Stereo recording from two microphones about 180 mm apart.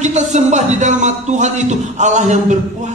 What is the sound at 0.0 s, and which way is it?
A man's voice, 40° right (ahead or behind).